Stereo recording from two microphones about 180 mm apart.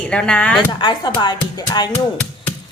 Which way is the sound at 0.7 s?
25° left (ahead or behind).